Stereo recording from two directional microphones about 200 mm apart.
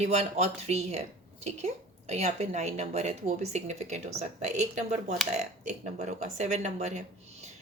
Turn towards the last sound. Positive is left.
turn(degrees=-35)  # may be behind; listen again after turning